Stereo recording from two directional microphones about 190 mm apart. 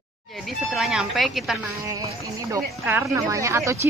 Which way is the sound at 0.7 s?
Centre (ahead or behind).